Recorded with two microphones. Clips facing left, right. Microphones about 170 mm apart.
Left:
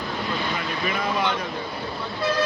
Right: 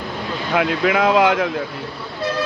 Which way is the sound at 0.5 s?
85° right.